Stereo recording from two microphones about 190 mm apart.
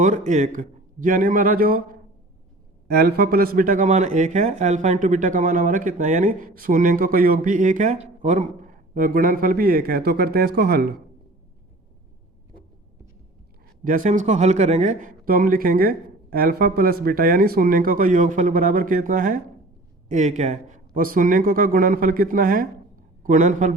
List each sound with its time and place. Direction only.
0.0 s speech: 40° right (ahead or behind)
2.8 s speech: 55° right (ahead or behind)
13.8 s speech: 40° right (ahead or behind)